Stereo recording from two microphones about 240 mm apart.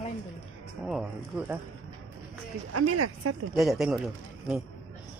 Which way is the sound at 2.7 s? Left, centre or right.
Right.